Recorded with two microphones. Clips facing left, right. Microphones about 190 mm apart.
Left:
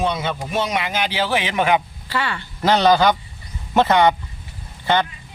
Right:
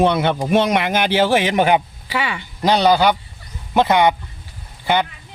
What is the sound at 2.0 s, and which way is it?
A man's voice, 15° right (ahead or behind).